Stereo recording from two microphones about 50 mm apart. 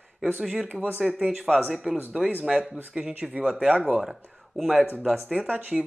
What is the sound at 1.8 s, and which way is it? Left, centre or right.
Speech, centre.